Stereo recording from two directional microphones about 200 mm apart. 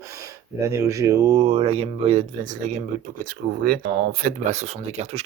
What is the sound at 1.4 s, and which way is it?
Speech, 30° right (ahead or behind).